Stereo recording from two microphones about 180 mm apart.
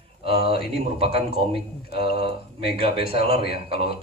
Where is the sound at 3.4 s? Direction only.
60° left (ahead or behind).